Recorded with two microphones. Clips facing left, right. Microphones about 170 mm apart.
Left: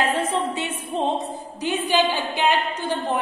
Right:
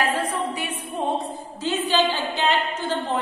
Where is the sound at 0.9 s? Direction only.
25° left (ahead or behind).